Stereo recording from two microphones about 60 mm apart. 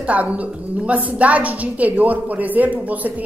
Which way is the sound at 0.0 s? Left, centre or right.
Right.